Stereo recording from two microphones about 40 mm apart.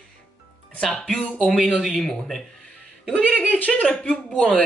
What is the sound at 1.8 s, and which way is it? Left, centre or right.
Speech, centre.